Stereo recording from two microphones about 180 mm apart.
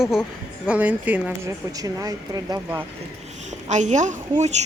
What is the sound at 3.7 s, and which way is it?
Speech, 40° right (ahead or behind).